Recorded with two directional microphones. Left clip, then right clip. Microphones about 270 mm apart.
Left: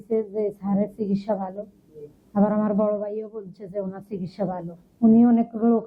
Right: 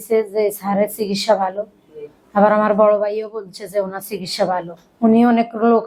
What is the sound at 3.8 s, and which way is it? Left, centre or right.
Speech, centre.